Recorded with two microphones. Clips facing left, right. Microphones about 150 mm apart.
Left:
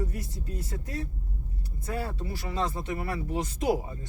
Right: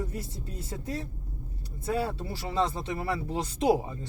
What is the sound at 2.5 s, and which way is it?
Speech, 25° right (ahead or behind).